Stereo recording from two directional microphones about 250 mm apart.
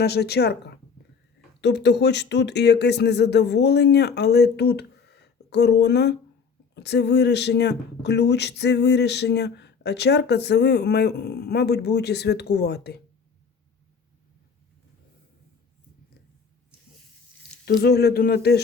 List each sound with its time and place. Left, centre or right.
0.0 s speech: left
17.7 s speech: left